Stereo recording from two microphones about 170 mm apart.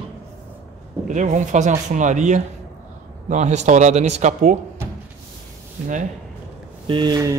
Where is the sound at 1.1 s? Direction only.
45° right (ahead or behind).